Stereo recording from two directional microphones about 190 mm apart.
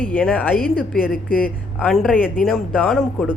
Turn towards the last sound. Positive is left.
turn(degrees=5)  # may be behind; listen again after turning